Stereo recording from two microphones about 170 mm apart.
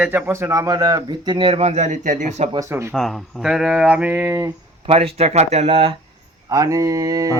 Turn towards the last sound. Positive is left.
turn(degrees=-20)  # may be behind; listen again after turning